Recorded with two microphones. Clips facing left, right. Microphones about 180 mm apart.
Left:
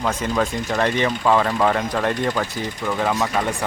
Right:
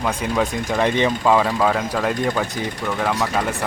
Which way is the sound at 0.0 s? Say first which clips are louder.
Even; 10° right (ahead or behind).